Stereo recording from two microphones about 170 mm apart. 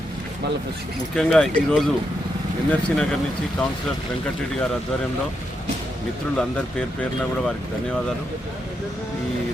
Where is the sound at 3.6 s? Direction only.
10° left (ahead or behind).